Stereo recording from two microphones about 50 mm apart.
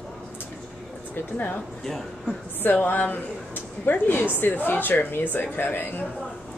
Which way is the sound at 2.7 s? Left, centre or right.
Left.